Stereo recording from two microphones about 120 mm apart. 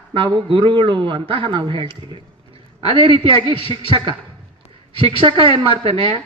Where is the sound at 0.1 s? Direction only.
45° right (ahead or behind).